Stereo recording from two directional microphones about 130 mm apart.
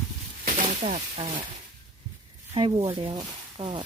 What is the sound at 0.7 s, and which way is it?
Speech, 60° right (ahead or behind).